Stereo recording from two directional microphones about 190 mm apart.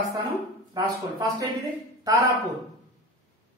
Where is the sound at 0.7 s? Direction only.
20° right (ahead or behind).